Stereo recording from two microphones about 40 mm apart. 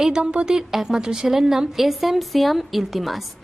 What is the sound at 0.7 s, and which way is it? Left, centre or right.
Speech, centre.